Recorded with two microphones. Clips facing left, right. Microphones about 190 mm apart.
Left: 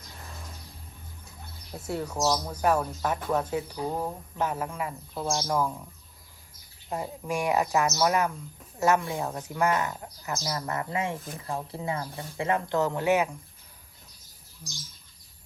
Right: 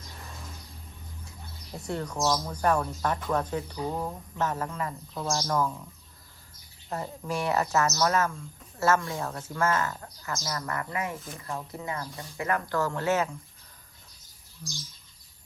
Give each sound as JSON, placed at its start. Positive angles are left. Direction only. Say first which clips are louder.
{"t": 1.7, "sound": "a man's voice", "louder": "left 1 dB", "side_deg": 5}
{"t": 6.9, "sound": "a man's voice", "louder": "left 1 dB", "side_deg": 15}
{"t": 14.6, "sound": "a man's voice", "louder": "right 4 dB", "side_deg": 5}